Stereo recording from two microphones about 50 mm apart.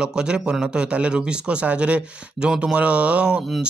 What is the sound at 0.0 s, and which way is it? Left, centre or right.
A man's voice, centre.